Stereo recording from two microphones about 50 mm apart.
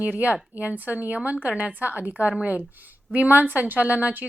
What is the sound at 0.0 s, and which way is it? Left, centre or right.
A woman's voice, right.